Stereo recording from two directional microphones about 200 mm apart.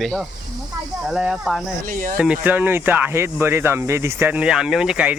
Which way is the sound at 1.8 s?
40° right (ahead or behind).